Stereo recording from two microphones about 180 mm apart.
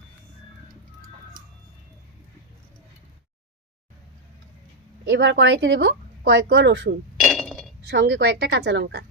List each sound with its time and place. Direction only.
5.0 s speech: 80° right
7.2 s chink: centre (ahead or behind)
7.9 s a woman's voice: 80° right